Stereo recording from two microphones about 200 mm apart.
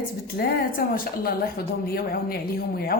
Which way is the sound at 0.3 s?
50° left (ahead or behind).